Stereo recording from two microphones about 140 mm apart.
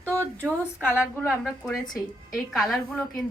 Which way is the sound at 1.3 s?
5° right (ahead or behind).